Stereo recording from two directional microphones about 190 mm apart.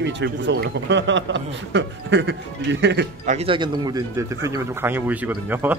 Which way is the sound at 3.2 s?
40° right (ahead or behind).